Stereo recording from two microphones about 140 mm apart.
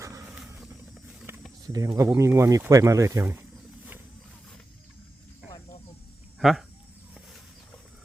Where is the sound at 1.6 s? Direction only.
25° right (ahead or behind).